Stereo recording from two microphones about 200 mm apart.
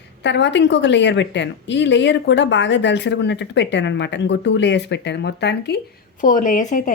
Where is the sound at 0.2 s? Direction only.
60° left (ahead or behind).